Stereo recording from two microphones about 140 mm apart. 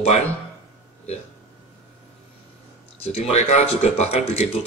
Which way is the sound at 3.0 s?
50° left (ahead or behind).